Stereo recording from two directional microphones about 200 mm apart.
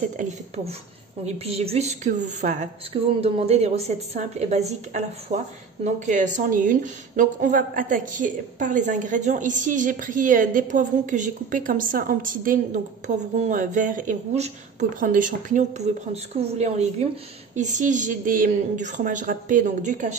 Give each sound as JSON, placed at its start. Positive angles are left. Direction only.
{"t": 0.2, "sound": "a woman's voice", "side_deg": -40}
{"t": 1.2, "sound": "a woman's voice", "side_deg": -30}